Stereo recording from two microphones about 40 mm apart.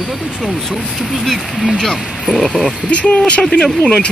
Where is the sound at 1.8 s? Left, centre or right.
Centre.